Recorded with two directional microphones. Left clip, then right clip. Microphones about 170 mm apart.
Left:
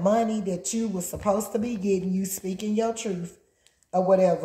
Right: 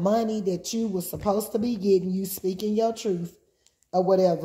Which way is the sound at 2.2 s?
35° right (ahead or behind).